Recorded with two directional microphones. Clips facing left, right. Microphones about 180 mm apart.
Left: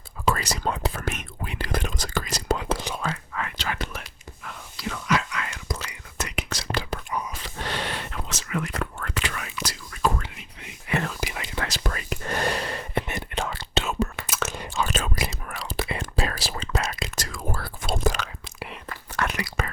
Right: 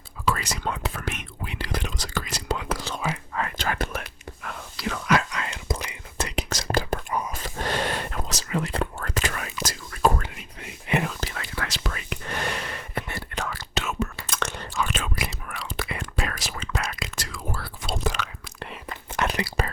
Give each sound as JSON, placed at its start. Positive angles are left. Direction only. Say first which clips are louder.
{"t": 0.3, "sound": "speech", "louder": "left 2 dB", "side_deg": 35}
{"t": 3.3, "sound": "whispering", "louder": "right 3 dB", "side_deg": -40}
{"t": 5.3, "sound": "whispering", "louder": "right 2 dB", "side_deg": -30}
{"t": 10.9, "sound": "whispering", "louder": "right 2 dB", "side_deg": -25}
{"t": 11.2, "sound": "whispering", "louder": "left 2 dB", "side_deg": 15}
{"t": 11.4, "sound": "whispering", "louder": "left 2 dB", "side_deg": 25}
{"t": 11.7, "sound": "whispering", "louder": "left 2 dB", "side_deg": 40}
{"t": 14.3, "sound": "a sound", "louder": "left 1 dB", "side_deg": 5}
{"t": 14.8, "sound": "whispering", "louder": "left 2 dB", "side_deg": 40}
{"t": 15.8, "sound": "whispering", "louder": "left 3 dB", "side_deg": 25}
{"t": 17.2, "sound": "whispering", "louder": "left 2 dB", "side_deg": 45}
{"t": 18.9, "sound": "whispering", "louder": "right 2 dB", "side_deg": -20}
{"t": 19.3, "sound": "whispering", "louder": "right 2 dB", "side_deg": -35}